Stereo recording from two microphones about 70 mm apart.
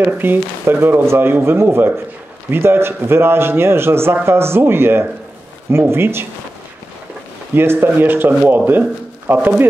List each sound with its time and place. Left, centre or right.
0.0 s a man's voice: right
7.5 s a man's voice: right